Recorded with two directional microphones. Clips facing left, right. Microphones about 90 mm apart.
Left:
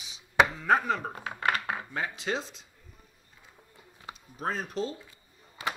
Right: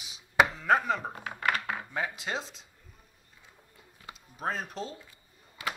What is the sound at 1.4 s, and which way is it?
Dishes, 35° left (ahead or behind).